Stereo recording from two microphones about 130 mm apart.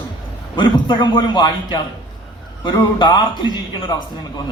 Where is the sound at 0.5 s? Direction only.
40° left (ahead or behind).